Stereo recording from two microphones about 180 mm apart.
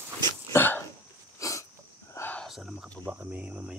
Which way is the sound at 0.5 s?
10° left (ahead or behind).